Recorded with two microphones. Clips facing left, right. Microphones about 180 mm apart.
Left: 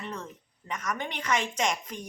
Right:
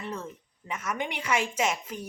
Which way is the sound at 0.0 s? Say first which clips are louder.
Right 2 dB; 10° right (ahead or behind).